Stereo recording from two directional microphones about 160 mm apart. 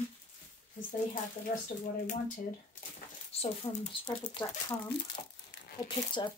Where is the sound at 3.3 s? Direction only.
40° left (ahead or behind).